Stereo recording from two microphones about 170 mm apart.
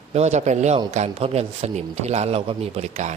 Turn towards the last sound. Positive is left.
turn(degrees=-40)  # may be behind; listen again after turning